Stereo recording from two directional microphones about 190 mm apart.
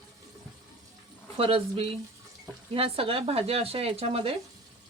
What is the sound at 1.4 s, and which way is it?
Stir, 30° right (ahead or behind).